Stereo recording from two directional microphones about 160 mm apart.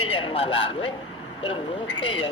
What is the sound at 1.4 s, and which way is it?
Speech, 35° left (ahead or behind).